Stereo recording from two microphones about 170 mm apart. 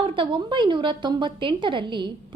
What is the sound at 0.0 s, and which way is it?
A woman's voice, 30° right (ahead or behind).